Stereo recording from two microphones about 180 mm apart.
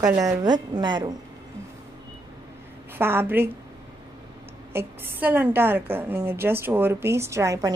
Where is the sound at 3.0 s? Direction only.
10° right (ahead or behind).